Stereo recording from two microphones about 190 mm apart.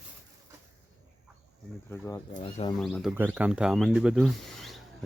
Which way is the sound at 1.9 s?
15° left (ahead or behind).